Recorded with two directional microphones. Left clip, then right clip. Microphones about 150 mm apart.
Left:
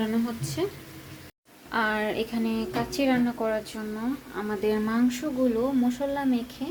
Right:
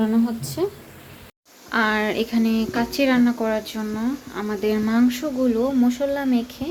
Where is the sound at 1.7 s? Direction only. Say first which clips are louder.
Right 5 dB; centre (ahead or behind).